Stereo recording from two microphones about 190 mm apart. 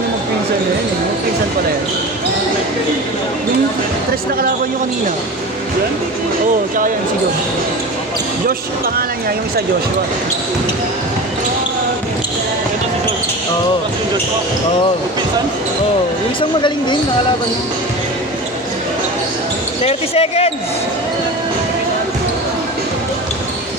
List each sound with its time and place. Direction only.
19.8 s speech: 35° left (ahead or behind)